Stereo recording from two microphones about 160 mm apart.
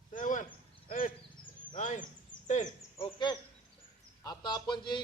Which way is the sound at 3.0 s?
30° left (ahead or behind).